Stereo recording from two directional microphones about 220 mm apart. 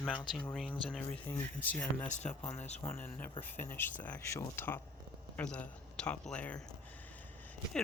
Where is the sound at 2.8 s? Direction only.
10° left (ahead or behind).